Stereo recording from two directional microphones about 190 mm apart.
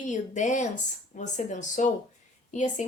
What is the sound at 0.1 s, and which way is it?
Speech, 40° left (ahead or behind).